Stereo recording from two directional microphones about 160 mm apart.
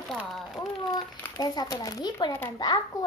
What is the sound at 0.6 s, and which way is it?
A child's voice, 25° left (ahead or behind).